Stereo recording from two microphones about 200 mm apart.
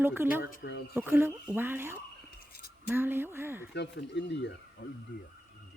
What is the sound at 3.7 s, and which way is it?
Speech, 60° left (ahead or behind).